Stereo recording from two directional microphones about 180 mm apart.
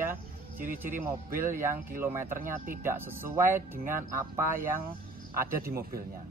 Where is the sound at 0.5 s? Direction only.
50° right (ahead or behind).